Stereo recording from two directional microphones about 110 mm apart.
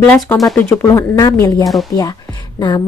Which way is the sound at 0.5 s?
25° left (ahead or behind).